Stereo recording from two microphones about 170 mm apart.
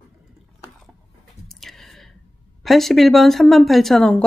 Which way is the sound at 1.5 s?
Centre (ahead or behind).